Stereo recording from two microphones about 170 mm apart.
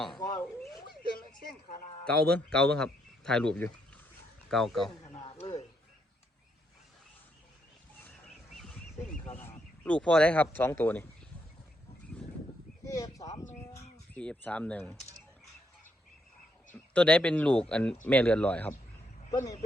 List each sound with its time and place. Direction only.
0.2 s a sound: 20° left (ahead or behind)
2.0 s a man's voice: 5° left (ahead or behind)
5.1 s chop: 35° left (ahead or behind)
8.0 s a sound: 5° left (ahead or behind)
9.4 s speech: 10° left (ahead or behind)
12.8 s speech: 20° left (ahead or behind)
14.1 s speech: 10° left (ahead or behind)
16.7 s speech: 5° left (ahead or behind)